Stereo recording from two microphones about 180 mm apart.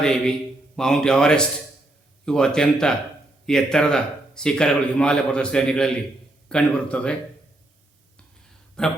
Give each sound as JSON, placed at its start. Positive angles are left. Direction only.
{"t": 0.0, "sound": "a man's voice", "side_deg": 5}
{"t": 8.8, "sound": "speech", "side_deg": 5}